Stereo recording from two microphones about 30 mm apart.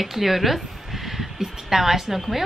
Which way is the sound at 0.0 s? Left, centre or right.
Centre.